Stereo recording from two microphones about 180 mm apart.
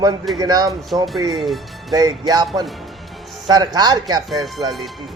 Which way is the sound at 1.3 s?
Centre (ahead or behind).